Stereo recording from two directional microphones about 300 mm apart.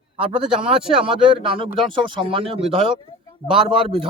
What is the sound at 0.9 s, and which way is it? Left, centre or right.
Speech, centre.